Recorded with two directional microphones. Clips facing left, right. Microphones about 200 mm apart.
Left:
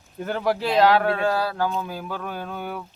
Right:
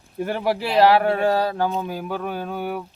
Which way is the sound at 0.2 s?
5° right (ahead or behind).